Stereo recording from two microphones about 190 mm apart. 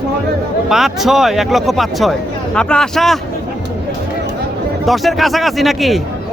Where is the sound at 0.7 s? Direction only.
Centre (ahead or behind).